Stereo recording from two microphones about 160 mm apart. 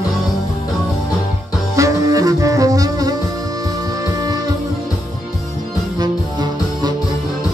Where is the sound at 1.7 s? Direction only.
20° right (ahead or behind).